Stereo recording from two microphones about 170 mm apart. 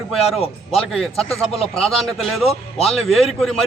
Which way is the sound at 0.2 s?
35° left (ahead or behind).